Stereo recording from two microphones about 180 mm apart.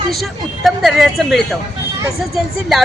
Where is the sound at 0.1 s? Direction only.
Centre (ahead or behind).